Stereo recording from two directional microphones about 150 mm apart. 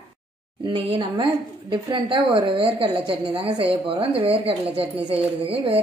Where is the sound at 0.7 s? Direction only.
40° right (ahead or behind).